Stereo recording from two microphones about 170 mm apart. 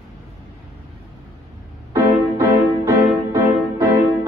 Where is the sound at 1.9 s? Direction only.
20° right (ahead or behind).